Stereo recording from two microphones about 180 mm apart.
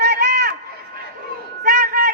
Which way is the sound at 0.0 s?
60° right (ahead or behind).